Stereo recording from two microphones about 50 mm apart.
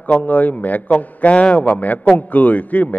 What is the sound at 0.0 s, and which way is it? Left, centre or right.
A man's voice, left.